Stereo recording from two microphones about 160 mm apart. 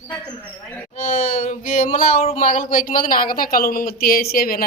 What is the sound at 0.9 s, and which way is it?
Speech, 45° left (ahead or behind).